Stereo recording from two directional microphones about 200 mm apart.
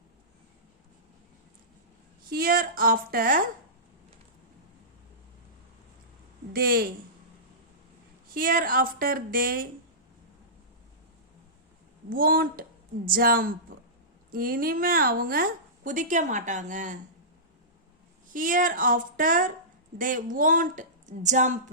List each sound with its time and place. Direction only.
2.3 s a woman's voice: 45° right (ahead or behind)
6.5 s a woman's voice: 50° right (ahead or behind)
8.3 s a woman's voice: 45° right (ahead or behind)
12.0 s a woman's voice: 45° right (ahead or behind)
18.3 s a woman's voice: 40° right (ahead or behind)